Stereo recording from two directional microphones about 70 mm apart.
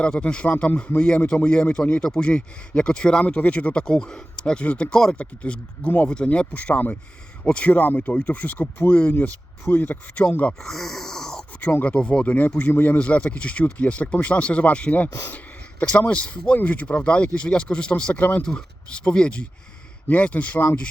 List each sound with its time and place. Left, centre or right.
0.0 s speech: centre
10.6 s a sound: centre
11.6 s speech: left